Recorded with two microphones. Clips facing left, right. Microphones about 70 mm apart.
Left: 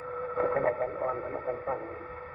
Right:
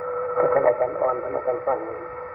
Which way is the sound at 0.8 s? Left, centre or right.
Right.